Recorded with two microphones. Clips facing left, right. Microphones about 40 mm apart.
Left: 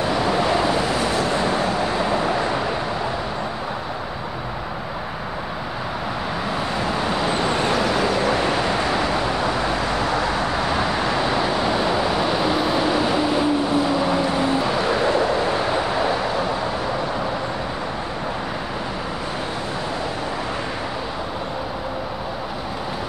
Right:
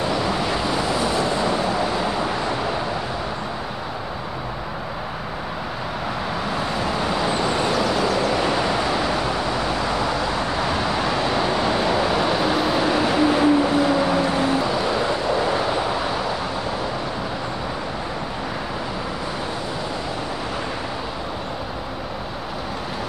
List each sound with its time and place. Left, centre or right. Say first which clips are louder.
0.1 s vehicle: left 2 dB; centre
0.4 s vehicle: left 3 dB; left
6.5 s vehicle: left 1 dB; centre
8.0 s vehicle: left 1 dB; left
8.6 s vehicle: even; centre
14.8 s vehicle: left 3 dB; left
15.4 s vehicle: even; centre